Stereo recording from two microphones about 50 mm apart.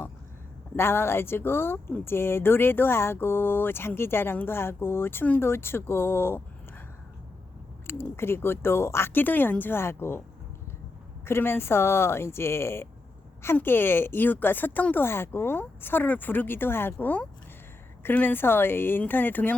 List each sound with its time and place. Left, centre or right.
0.8 s speech: left
7.9 s speech: left
9.1 s speech: left
11.3 s speech: left
13.4 s speech: left
15.0 s speech: left